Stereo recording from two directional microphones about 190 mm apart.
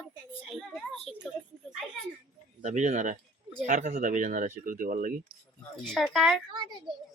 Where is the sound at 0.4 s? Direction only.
Centre (ahead or behind).